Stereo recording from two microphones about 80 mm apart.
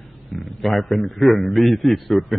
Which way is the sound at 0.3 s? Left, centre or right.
Centre.